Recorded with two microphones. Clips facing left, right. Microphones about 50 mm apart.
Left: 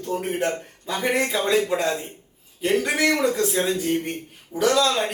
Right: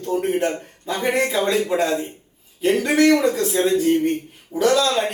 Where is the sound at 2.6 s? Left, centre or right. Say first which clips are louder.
Right 4 dB; centre.